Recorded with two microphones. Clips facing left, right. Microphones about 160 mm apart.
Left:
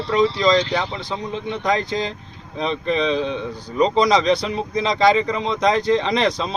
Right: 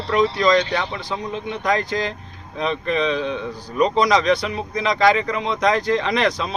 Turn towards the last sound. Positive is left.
turn(degrees=30)  # may be behind; listen again after turning